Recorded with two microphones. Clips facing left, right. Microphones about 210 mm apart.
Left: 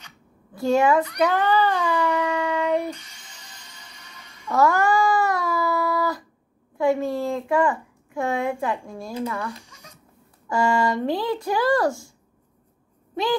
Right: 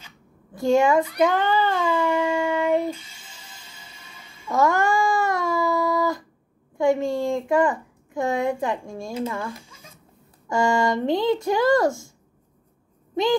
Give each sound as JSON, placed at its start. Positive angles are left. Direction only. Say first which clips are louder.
{"t": 0.6, "sound": "speech", "louder": "right 1 dB", "side_deg": -25}
{"t": 3.0, "sound": "music", "louder": "right 1 dB", "side_deg": -5}
{"t": 4.2, "sound": "a sound", "louder": "even", "side_deg": -5}
{"t": 4.5, "sound": "cat", "louder": "left 1 dB", "side_deg": -25}
{"t": 6.8, "sound": "speech", "louder": "right 1 dB", "side_deg": -25}
{"t": 13.1, "sound": "speech", "louder": "right 3 dB", "side_deg": -20}